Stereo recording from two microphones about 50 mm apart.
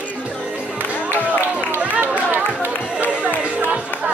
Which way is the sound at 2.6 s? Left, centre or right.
Left.